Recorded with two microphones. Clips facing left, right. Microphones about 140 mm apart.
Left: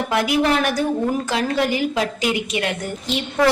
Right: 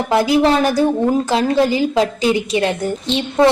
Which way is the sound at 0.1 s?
30° right (ahead or behind).